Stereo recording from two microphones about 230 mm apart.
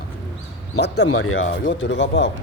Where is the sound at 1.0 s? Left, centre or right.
Left.